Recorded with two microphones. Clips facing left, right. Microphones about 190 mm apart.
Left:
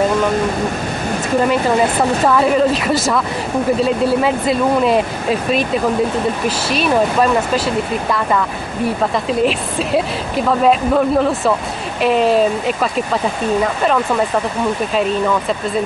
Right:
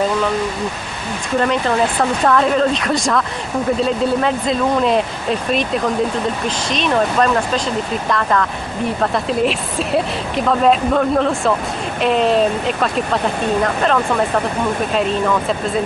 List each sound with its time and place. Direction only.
2.2 s speech: 5° left (ahead or behind)